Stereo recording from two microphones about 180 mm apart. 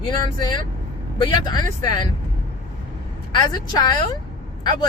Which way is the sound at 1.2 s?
25° left (ahead or behind).